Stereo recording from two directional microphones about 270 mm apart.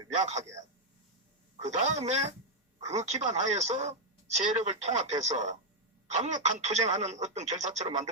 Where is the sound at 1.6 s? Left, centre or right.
Right.